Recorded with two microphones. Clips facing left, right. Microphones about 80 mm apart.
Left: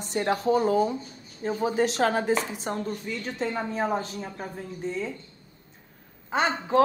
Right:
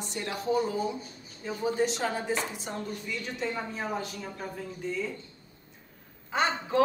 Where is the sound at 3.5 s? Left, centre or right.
Left.